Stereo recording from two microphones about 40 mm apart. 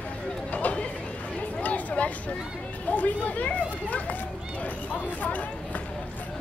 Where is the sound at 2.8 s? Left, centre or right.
Left.